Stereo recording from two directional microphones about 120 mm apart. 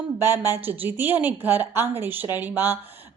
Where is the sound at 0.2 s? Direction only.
20° right (ahead or behind).